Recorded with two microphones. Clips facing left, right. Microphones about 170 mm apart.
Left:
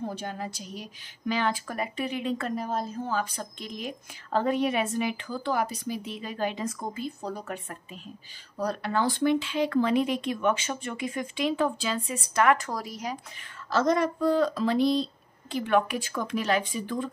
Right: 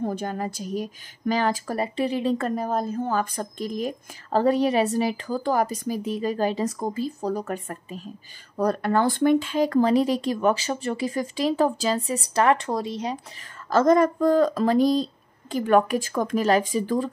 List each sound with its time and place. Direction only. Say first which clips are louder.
0.1 s a woman's voice: right 6 dB; 45° right (ahead or behind); by 13.2 s 30° right (ahead or behind)
13.7 s a woman's voice: right 6 dB; 50° right (ahead or behind)